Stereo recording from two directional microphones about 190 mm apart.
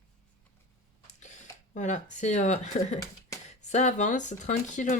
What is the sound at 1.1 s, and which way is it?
Speech, 40° left (ahead or behind).